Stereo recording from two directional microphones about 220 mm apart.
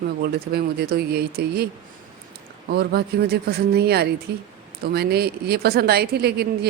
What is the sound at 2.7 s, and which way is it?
A woman's voice, 45° right (ahead or behind).